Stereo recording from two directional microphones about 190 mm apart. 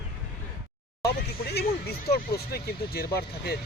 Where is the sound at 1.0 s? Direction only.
60° left (ahead or behind).